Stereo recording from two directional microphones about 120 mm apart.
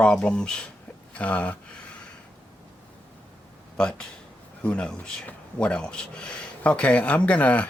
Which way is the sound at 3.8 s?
10° left (ahead or behind).